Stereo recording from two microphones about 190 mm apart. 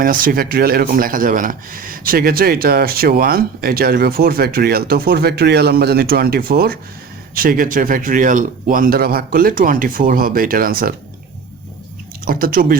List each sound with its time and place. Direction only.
0.0 s speech: 45° right (ahead or behind)
12.2 s speech: 50° right (ahead or behind)